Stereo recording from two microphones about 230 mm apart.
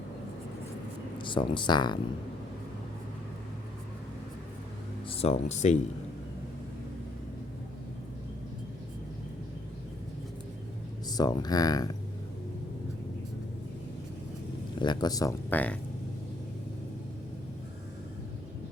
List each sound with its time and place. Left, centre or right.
1.2 s speech: left
5.0 s speech: left
11.1 s speech: centre
14.8 s speech: centre